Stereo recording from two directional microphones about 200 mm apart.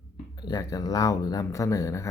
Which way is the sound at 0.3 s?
20° left (ahead or behind).